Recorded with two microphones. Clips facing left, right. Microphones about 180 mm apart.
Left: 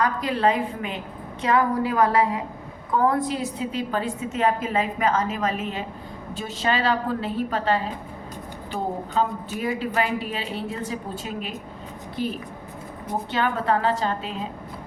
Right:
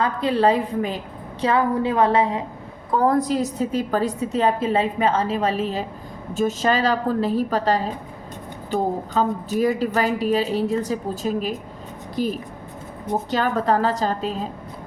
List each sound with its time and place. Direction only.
0.0 s a woman's voice: 30° right (ahead or behind)
2.9 s a woman's voice: 40° right (ahead or behind)
6.3 s a woman's voice: 45° right (ahead or behind)